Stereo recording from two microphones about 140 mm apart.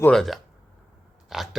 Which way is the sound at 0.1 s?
5° left (ahead or behind).